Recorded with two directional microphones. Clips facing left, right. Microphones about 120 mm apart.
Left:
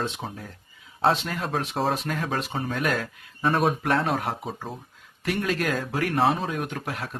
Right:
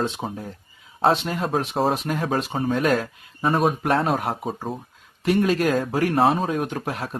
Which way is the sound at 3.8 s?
25° right (ahead or behind).